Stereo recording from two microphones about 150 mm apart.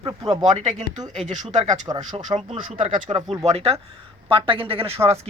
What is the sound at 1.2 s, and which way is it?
Speech, 50° right (ahead or behind).